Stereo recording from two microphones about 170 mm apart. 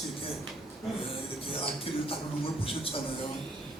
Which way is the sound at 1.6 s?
35° left (ahead or behind).